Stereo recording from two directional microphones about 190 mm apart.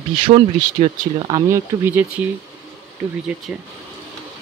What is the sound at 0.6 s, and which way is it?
Speech, 25° right (ahead or behind).